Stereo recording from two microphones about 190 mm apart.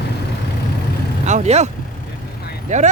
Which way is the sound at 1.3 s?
35° right (ahead or behind).